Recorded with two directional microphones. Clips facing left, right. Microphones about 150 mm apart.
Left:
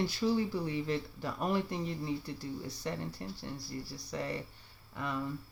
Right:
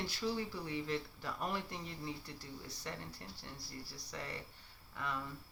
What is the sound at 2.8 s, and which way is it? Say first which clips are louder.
Speech: left 8 dB; 20° left (ahead or behind).